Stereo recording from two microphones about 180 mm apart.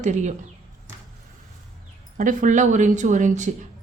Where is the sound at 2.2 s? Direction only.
45° right (ahead or behind).